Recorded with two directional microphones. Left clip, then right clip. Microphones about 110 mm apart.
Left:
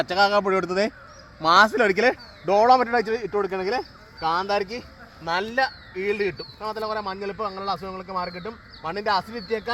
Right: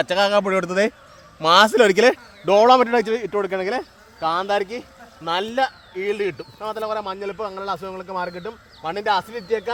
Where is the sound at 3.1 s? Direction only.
75° right (ahead or behind); by 3.8 s 45° right (ahead or behind).